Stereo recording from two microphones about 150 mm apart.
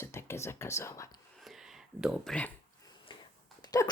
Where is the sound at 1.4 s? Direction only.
Centre (ahead or behind).